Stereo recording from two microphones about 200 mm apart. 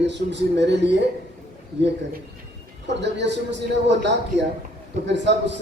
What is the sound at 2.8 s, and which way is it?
A man's voice, 60° right (ahead or behind).